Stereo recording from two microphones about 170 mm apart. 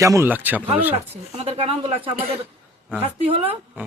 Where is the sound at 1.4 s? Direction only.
35° right (ahead or behind).